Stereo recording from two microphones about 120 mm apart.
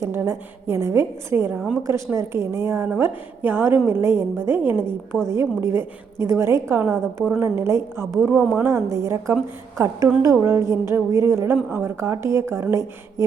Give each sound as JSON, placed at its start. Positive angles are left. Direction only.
{"t": 0.0, "sound": "a woman's voice", "side_deg": -20}
{"t": 1.5, "sound": "a woman's voice", "side_deg": -5}
{"t": 1.9, "sound": "a woman's voice", "side_deg": -20}